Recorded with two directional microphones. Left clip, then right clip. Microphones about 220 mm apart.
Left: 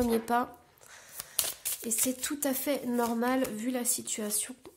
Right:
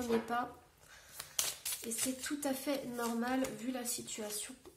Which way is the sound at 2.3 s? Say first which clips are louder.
Left 5 dB; 50° left (ahead or behind).